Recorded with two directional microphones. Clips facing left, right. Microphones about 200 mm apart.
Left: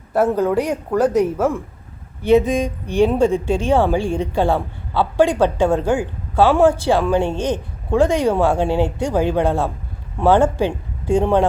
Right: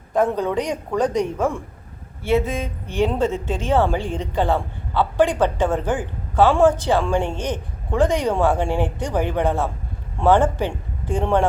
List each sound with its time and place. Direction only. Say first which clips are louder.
0.1 s a woman's voice: left 3 dB; 5° left (ahead or behind)
2.2 s a woman's voice: left 6 dB; 15° left (ahead or behind)
7.3 s a man's voice: left 5 dB; 15° right (ahead or behind)
7.5 s a woman's voice: left 5 dB; 10° left (ahead or behind)